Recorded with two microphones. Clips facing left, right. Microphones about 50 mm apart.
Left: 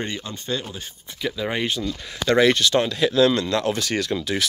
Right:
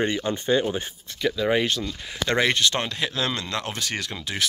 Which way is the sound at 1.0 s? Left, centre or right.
Centre.